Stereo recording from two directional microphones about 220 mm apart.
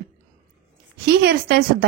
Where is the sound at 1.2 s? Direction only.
50° right (ahead or behind).